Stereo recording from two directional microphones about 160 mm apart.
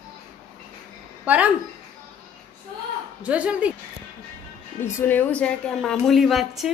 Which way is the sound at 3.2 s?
10° right (ahead or behind).